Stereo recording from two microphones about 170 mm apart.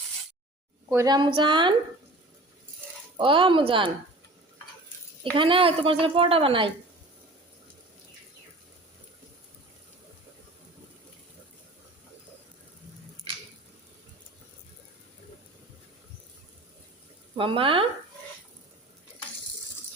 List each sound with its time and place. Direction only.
0.9 s speech: 25° right (ahead or behind)
3.2 s speech: 30° right (ahead or behind)
5.2 s a woman's voice: 30° right (ahead or behind)
17.3 s a woman's voice: 30° right (ahead or behind)